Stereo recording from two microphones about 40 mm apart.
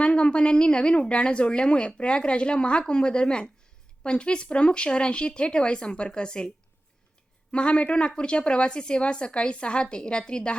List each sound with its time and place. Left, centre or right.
0.0 s a woman's voice: left
7.5 s a woman's voice: left